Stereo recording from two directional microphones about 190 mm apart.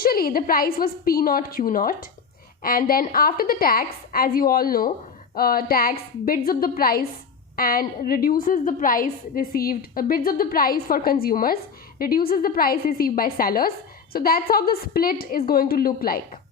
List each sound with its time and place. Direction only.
0.0 s a woman's voice: 50° left (ahead or behind)